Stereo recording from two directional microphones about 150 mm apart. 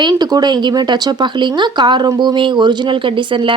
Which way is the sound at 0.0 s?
30° right (ahead or behind).